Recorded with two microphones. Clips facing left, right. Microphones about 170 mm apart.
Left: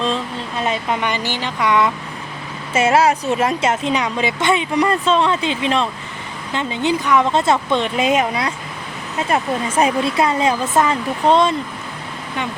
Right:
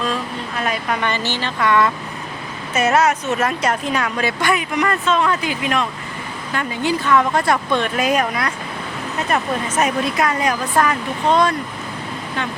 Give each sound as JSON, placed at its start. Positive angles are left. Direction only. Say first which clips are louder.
{"t": 0.0, "sound": "speech", "louder": "left 2 dB", "side_deg": 25}
{"t": 2.7, "sound": "speech", "louder": "left 2 dB", "side_deg": 25}